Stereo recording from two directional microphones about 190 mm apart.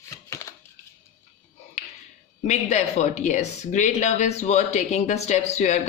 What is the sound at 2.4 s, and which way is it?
Speech, 40° left (ahead or behind).